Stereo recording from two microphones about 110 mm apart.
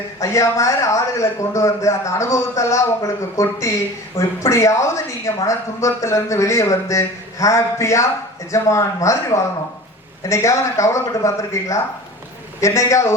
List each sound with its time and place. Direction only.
0.2 s a man's voice: 25° left (ahead or behind)